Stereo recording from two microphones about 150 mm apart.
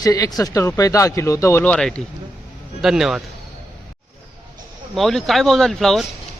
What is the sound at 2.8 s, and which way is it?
Speech, 5° right (ahead or behind).